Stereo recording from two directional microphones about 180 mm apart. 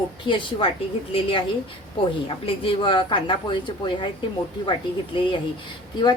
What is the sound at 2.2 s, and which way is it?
A woman's voice, 30° left (ahead or behind).